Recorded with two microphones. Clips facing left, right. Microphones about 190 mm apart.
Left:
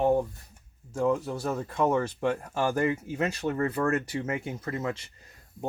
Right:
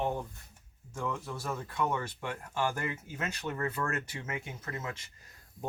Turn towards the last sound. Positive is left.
turn(degrees=35)  # may be behind; listen again after turning